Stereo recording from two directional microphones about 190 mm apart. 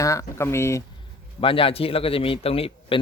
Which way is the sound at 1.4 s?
30° left (ahead or behind).